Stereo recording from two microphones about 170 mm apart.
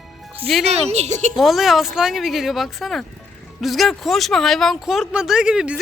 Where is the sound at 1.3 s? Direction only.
Centre (ahead or behind).